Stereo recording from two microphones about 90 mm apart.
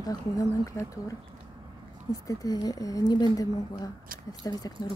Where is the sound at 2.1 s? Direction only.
40° left (ahead or behind).